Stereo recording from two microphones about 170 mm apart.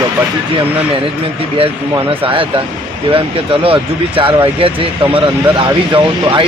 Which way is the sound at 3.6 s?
30° right (ahead or behind).